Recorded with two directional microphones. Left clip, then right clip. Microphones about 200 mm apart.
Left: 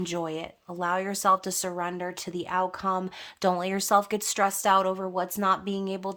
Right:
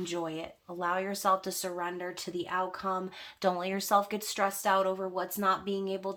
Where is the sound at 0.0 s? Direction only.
45° left (ahead or behind).